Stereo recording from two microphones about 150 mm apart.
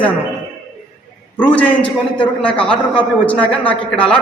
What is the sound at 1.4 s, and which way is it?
A man's voice, 10° left (ahead or behind).